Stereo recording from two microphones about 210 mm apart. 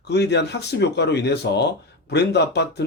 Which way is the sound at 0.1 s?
55° left (ahead or behind).